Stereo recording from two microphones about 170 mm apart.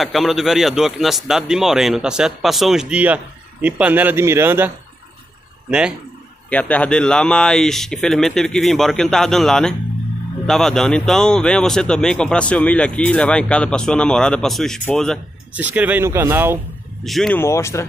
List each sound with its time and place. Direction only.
0.0 s a man's voice: centre (ahead or behind)
6.5 s speech: 10° left (ahead or behind)
15.5 s a man's voice: 10° right (ahead or behind)
17.0 s speech: centre (ahead or behind)
17.4 s speech: 15° left (ahead or behind)